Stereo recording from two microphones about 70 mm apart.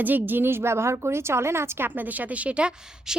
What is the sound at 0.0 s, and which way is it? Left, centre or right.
A woman's voice, right.